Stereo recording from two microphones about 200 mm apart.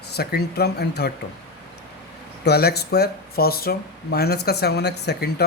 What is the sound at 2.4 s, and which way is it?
Speech, 55° left (ahead or behind).